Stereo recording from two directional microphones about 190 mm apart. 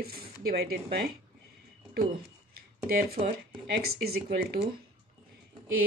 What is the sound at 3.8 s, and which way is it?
Speech, 55° right (ahead or behind).